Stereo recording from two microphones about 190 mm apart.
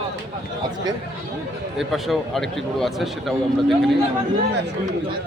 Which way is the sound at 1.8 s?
Centre (ahead or behind).